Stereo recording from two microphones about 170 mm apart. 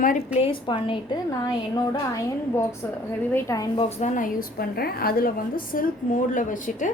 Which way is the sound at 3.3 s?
20° left (ahead or behind).